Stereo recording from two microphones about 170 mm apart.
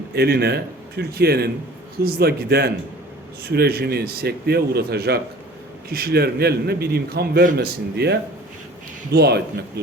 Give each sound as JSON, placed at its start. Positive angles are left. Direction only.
{"t": 0.1, "sound": "a man's voice", "side_deg": -70}
{"t": 9.1, "sound": "a man's voice", "side_deg": -70}